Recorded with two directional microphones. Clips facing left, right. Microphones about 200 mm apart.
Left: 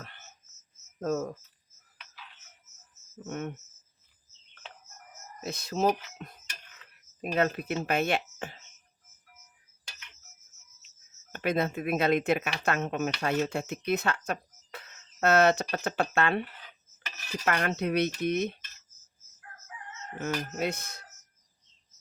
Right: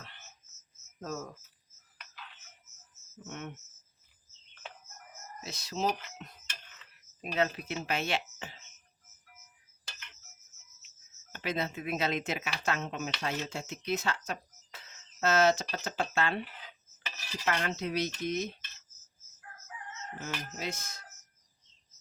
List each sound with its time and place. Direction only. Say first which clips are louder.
0.9 s speech: left 9 dB; 50° left (ahead or behind)
3.2 s speech: left 7 dB; 45° left (ahead or behind)
5.4 s speech: left 6 dB; 55° left (ahead or behind)
11.3 s speech: left 6 dB; 55° left (ahead or behind)
17.4 s speech: left 4 dB; 60° left (ahead or behind)
20.1 s speech: left 9 dB; 55° left (ahead or behind)